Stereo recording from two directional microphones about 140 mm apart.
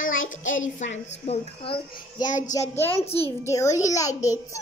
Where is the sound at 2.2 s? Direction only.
65° left (ahead or behind).